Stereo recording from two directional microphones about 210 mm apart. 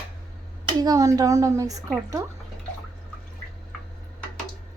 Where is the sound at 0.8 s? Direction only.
15° right (ahead or behind).